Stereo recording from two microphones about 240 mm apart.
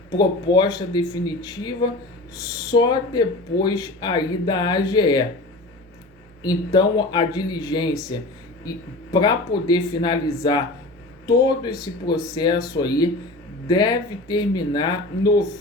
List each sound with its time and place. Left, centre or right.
0.2 s speech: centre
6.4 s speech: centre
9.6 s speech: centre